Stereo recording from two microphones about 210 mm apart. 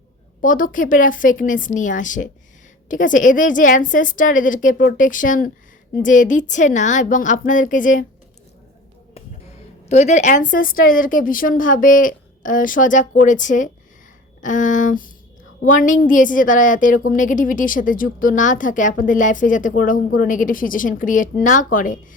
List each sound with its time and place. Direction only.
0.4 s speech: 40° left (ahead or behind)
9.9 s speech: 35° left (ahead or behind)